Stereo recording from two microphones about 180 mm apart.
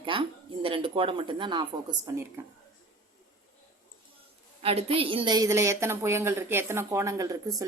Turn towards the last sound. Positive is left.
turn(degrees=-20)  # may be behind; listen again after turning